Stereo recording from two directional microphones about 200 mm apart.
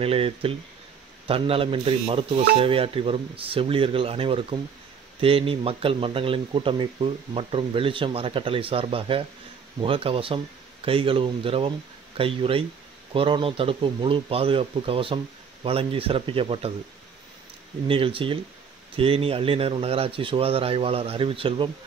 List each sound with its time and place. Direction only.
0.0 s speech: 30° right (ahead or behind)
17.8 s speech: 25° right (ahead or behind)